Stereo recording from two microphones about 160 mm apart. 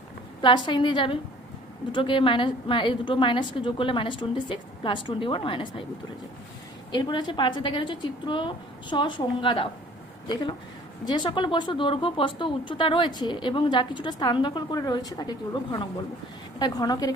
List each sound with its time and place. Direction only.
0.4 s a woman's voice: 30° left (ahead or behind)
6.9 s speech: 30° left (ahead or behind)
11.0 s speech: 25° left (ahead or behind)